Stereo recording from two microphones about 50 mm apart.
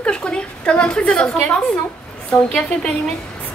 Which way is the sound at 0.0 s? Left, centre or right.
Centre.